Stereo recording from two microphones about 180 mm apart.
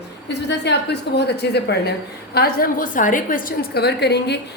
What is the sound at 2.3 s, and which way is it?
A woman's voice, 55° left (ahead or behind).